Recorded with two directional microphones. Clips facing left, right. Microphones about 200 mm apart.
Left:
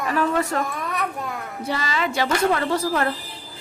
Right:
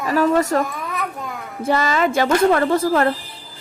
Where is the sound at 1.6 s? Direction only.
50° right (ahead or behind).